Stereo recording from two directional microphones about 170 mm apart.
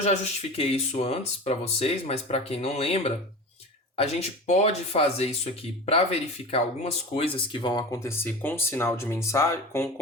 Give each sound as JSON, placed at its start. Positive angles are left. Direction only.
{"t": 0.0, "sound": "speech", "side_deg": 35}